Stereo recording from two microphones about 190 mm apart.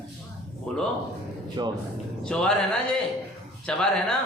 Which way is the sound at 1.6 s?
20° right (ahead or behind).